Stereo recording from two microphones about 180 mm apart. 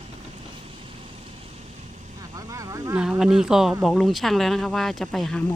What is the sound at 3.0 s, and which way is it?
Speech, 5° right (ahead or behind).